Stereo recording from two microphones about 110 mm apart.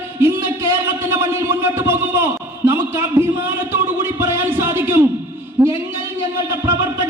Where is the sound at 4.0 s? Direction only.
25° right (ahead or behind).